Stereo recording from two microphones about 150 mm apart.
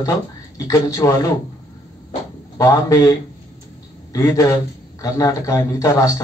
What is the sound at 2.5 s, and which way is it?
A man's voice, 20° left (ahead or behind).